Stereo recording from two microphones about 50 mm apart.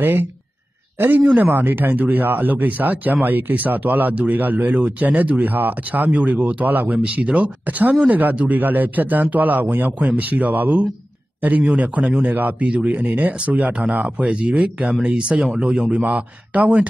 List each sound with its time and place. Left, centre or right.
0.0 s a man's voice: right
1.2 s speech: right
1.5 s speech: right
9.9 s speech: right
16.0 s speech: right